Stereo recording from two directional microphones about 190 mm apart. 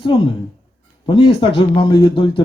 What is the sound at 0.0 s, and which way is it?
A man's voice, 25° left (ahead or behind).